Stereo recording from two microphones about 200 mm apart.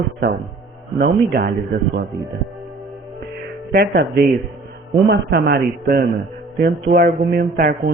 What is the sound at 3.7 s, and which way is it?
Speech, 55° right (ahead or behind).